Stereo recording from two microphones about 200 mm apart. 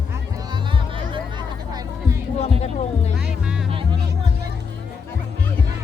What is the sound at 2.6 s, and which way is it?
Speech, 30° left (ahead or behind).